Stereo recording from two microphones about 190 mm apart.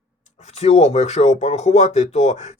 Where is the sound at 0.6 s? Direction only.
35° left (ahead or behind).